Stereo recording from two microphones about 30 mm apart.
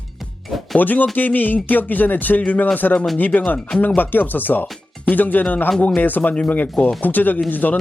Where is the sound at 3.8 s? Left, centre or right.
Left.